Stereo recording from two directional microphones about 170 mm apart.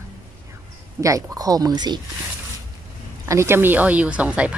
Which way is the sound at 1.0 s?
20° right (ahead or behind).